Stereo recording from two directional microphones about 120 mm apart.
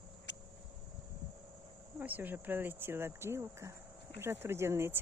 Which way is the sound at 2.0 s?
15° right (ahead or behind).